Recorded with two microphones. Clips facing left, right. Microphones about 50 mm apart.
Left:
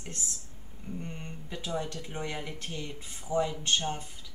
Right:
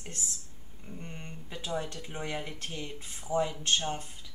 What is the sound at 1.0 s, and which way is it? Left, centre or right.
Speech, centre.